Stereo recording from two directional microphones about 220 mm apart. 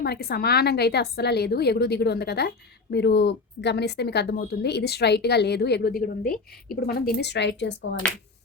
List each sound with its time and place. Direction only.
0.0 s speech: 45° left (ahead or behind)